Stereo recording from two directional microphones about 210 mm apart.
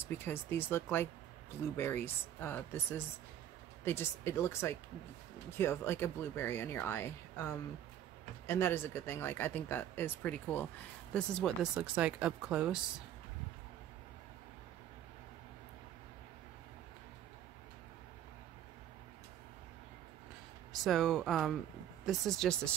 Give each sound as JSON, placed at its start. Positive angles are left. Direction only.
{"t": 0.0, "sound": "speech", "side_deg": 10}
{"t": 8.5, "sound": "speech", "side_deg": 10}
{"t": 20.8, "sound": "speech", "side_deg": 0}